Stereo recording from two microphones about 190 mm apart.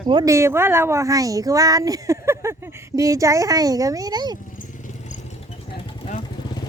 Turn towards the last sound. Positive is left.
turn(degrees=35)  # may be behind; listen again after turning